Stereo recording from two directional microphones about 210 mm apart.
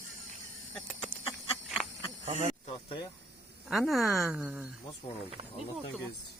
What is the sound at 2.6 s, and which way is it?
Speech, 25° left (ahead or behind).